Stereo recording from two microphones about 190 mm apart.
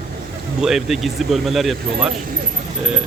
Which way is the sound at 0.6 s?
Centre (ahead or behind).